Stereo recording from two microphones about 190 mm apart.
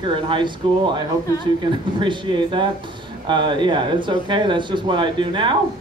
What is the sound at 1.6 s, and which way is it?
Speech, 25° right (ahead or behind).